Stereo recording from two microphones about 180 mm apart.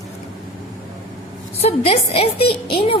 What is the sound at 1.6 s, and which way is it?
A woman's voice, 35° left (ahead or behind).